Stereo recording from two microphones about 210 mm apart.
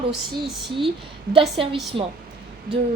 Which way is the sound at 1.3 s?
25° right (ahead or behind).